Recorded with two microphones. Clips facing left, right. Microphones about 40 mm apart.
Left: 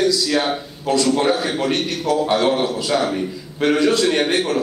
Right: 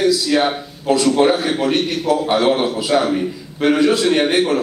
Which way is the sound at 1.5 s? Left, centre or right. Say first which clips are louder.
Right 3 dB; centre.